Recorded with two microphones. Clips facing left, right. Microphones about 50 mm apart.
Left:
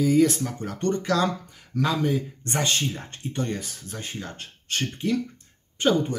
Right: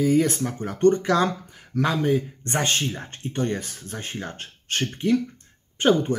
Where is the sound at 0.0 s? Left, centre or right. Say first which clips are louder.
Even; right.